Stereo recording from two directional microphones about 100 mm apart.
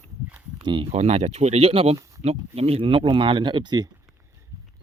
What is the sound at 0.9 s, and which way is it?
Speech, 90° right.